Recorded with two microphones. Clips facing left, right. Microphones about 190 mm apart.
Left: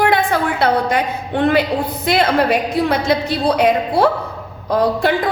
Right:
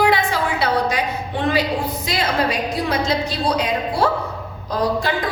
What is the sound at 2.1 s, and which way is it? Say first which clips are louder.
A woman's voice: left 7 dB; 60° left (ahead or behind).